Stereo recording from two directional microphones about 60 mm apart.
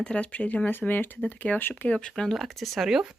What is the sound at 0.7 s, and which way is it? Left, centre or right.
Speech, left.